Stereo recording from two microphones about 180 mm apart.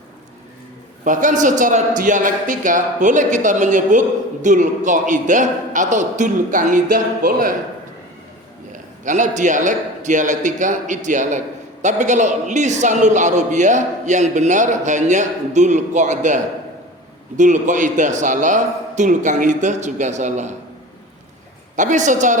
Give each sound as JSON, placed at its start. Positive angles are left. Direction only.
{"t": 1.0, "sound": "a man's voice", "side_deg": -45}
{"t": 9.0, "sound": "a man's voice", "side_deg": -45}
{"t": 21.8, "sound": "a man's voice", "side_deg": -40}